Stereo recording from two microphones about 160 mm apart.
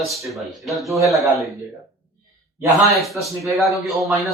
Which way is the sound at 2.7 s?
20° right (ahead or behind).